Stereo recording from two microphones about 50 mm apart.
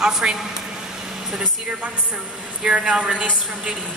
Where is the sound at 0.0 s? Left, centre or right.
Centre.